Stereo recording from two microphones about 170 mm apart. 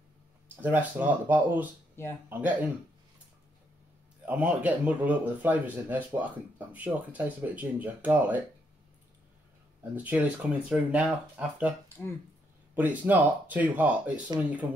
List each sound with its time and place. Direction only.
0.6 s speech: 10° right (ahead or behind)
4.3 s speech: 10° right (ahead or behind)
9.9 s speech: 10° right (ahead or behind)
12.7 s speech: 10° right (ahead or behind)